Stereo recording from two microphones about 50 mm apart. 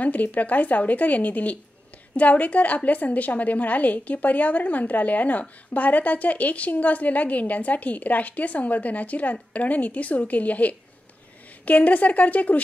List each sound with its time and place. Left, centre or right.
0.0 s a woman's voice: left